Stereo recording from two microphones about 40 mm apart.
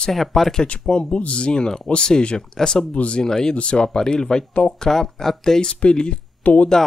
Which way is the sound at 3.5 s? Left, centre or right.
Left.